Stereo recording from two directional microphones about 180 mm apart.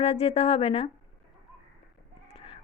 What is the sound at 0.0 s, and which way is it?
Speech, 35° left (ahead or behind).